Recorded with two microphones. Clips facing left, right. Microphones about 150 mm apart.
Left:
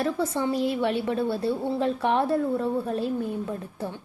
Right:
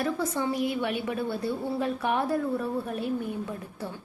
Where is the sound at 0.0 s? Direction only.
30° left (ahead or behind).